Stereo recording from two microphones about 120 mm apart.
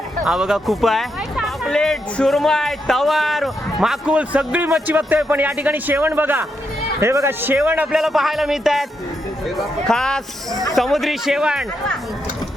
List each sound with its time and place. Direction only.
0.3 s a man's voice: 5° right (ahead or behind)